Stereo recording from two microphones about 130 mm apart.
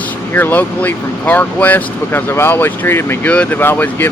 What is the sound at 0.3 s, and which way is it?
Speech, 15° left (ahead or behind).